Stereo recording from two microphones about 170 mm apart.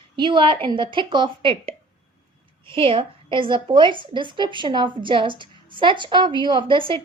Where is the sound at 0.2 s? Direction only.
30° right (ahead or behind).